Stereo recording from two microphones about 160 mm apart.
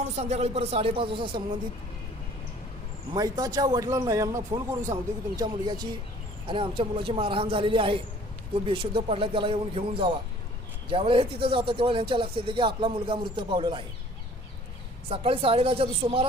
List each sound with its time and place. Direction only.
0.0 s speech: 45° right (ahead or behind)
3.1 s speech: 25° right (ahead or behind)
15.1 s speech: 35° right (ahead or behind)